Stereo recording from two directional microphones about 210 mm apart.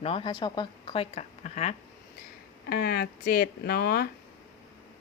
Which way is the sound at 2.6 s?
45° left (ahead or behind).